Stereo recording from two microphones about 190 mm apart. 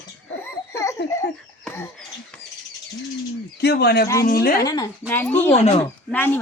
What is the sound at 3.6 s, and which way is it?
A woman's voice, 55° left (ahead or behind).